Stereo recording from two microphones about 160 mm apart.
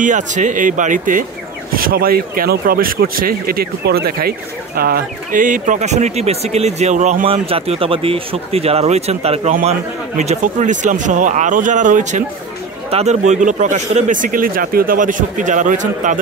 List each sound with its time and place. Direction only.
0.0 s speech: 50° right (ahead or behind)
1.7 s speech: 65° right (ahead or behind)